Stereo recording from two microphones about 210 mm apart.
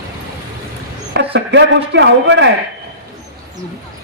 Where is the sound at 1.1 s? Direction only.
55° right (ahead or behind).